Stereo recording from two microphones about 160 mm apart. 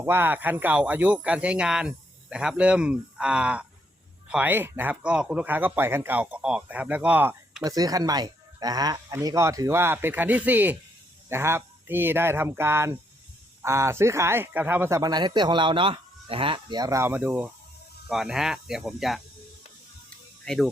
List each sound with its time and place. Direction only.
0.0 s speech: 15° right (ahead or behind)
7.6 s speech: 25° right (ahead or behind); by 19.2 s centre (ahead or behind)
20.4 s speech: 5° left (ahead or behind)